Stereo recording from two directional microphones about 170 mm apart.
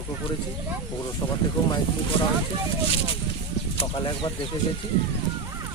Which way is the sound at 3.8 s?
30° left (ahead or behind).